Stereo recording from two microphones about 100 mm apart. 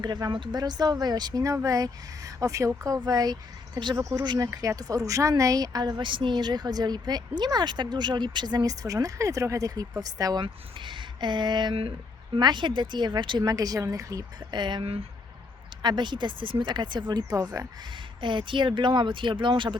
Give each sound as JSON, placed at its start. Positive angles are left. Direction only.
{"t": 0.0, "sound": "speech", "side_deg": -45}
{"t": 10.4, "sound": "speech", "side_deg": -55}
{"t": 11.7, "sound": "speech", "side_deg": -70}
{"t": 12.4, "sound": "speech", "side_deg": -50}
{"t": 14.6, "sound": "speech", "side_deg": -50}
{"t": 17.9, "sound": "speech", "side_deg": -55}